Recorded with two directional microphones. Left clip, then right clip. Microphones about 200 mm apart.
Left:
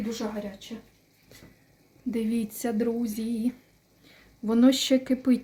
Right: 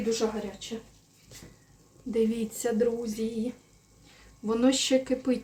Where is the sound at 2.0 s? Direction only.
45° left (ahead or behind).